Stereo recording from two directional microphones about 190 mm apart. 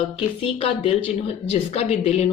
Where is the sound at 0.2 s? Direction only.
30° left (ahead or behind).